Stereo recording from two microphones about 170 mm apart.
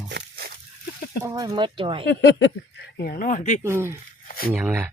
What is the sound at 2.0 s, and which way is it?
Speech, 90° left.